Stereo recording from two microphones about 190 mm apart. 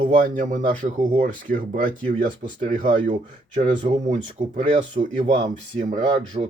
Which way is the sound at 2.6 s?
30° right (ahead or behind).